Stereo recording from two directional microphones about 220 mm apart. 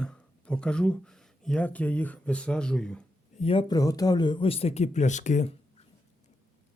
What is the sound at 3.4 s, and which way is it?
Speech, 25° left (ahead or behind).